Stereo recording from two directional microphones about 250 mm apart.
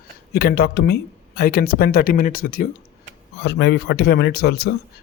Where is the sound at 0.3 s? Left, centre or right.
Left.